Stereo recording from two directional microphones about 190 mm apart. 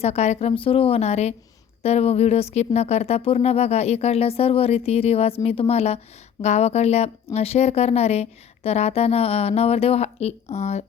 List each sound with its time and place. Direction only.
0.0 s speech: 35° left (ahead or behind)